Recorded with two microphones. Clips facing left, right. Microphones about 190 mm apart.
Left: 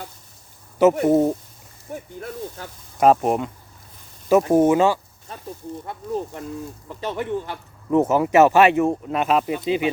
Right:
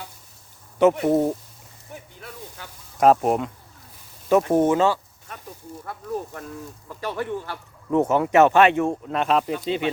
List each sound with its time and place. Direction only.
1.0 s speech: 5° left (ahead or behind)
1.9 s speech: 45° left (ahead or behind)
3.0 s speech: centre (ahead or behind)
5.3 s speech: 30° left (ahead or behind)
7.9 s speech: 5° left (ahead or behind)